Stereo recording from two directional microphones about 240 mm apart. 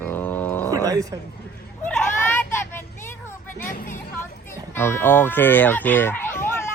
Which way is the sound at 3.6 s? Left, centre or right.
Left.